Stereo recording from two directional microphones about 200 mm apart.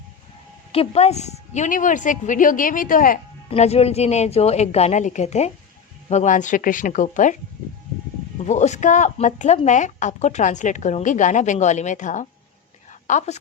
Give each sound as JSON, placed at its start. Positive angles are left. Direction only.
{"t": 0.7, "sound": "speech", "side_deg": 30}
{"t": 3.5, "sound": "speech", "side_deg": 30}
{"t": 8.4, "sound": "speech", "side_deg": 35}
{"t": 12.9, "sound": "a sound", "side_deg": 35}